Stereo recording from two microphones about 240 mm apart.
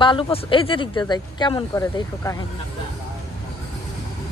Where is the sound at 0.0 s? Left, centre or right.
Left.